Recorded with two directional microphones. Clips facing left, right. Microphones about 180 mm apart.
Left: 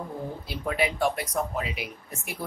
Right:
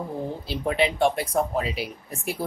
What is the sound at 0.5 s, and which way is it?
Speech, 25° right (ahead or behind).